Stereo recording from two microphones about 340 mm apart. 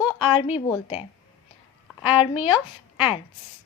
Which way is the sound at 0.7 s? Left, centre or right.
Centre.